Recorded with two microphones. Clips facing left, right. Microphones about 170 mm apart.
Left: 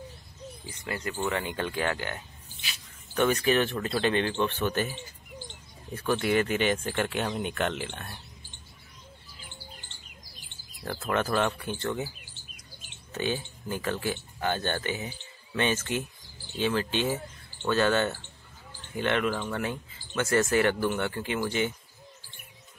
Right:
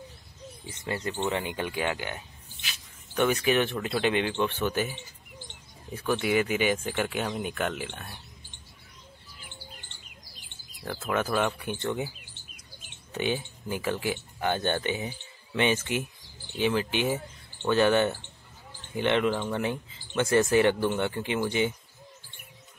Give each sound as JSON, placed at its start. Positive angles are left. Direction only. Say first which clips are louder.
{"t": 0.7, "sound": "speech", "louder": "right 2 dB", "side_deg": -25}
{"t": 10.8, "sound": "speech", "louder": "even", "side_deg": -5}
{"t": 13.1, "sound": "speech", "louder": "right 1 dB", "side_deg": -15}